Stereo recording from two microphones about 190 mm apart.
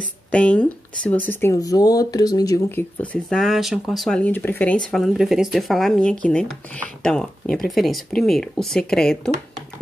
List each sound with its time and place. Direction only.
0.3 s speech: 5° left (ahead or behind)
3.0 s speech: 5° left (ahead or behind)